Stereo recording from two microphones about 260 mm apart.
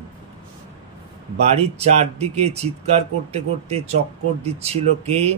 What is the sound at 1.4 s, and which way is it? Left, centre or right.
Speech, right.